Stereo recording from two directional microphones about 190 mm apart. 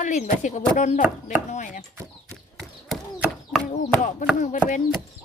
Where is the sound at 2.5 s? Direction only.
Centre (ahead or behind).